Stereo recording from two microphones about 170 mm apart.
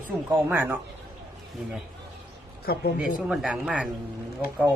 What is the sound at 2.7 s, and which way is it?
Speech, 65° left (ahead or behind).